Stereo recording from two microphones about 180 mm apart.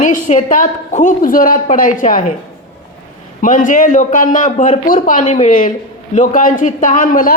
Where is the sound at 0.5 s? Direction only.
45° left (ahead or behind).